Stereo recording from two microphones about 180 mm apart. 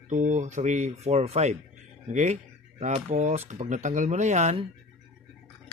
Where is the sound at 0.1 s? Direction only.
45° right (ahead or behind).